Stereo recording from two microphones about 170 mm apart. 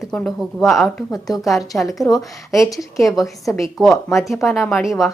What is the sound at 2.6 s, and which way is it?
A woman's voice, centre (ahead or behind).